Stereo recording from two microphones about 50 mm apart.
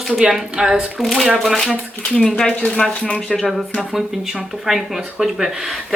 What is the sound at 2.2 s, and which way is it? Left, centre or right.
Speech, centre.